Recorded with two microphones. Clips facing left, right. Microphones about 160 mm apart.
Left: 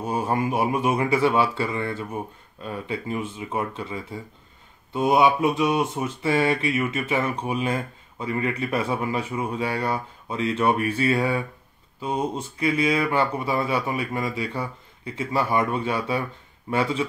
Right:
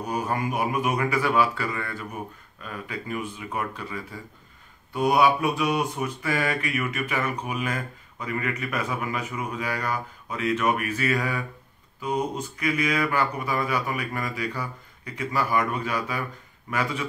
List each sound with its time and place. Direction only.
0.0 s speech: 25° left (ahead or behind)